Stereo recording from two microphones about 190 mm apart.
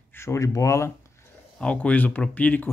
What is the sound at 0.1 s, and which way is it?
Speech, 15° left (ahead or behind).